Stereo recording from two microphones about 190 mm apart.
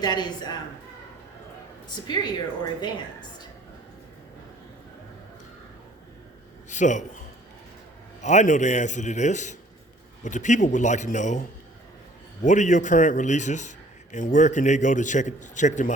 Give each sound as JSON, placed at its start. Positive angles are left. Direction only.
{"t": 0.0, "sound": "a woman's voice", "side_deg": 20}
{"t": 2.0, "sound": "a woman's voice", "side_deg": 20}
{"t": 6.7, "sound": "a man's voice", "side_deg": 40}
{"t": 8.2, "sound": "a man's voice", "side_deg": 40}